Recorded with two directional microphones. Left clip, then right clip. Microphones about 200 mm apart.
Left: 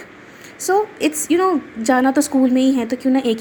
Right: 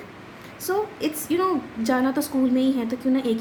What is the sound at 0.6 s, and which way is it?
A woman's voice, 35° left (ahead or behind).